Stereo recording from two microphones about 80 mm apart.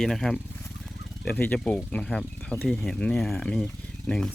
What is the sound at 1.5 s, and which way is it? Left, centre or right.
Speech, centre.